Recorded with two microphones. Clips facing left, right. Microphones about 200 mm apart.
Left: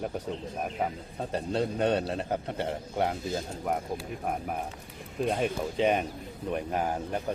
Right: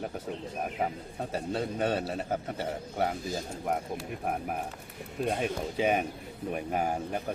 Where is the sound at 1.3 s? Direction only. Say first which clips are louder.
Left 3 dB; 5° right (ahead or behind).